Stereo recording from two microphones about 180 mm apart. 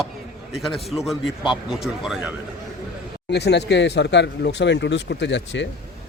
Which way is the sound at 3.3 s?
70° left (ahead or behind).